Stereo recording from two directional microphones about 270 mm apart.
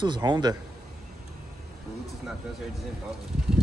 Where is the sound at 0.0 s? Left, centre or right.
Centre.